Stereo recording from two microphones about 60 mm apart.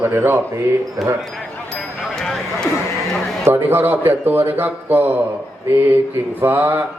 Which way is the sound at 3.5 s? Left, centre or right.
Right.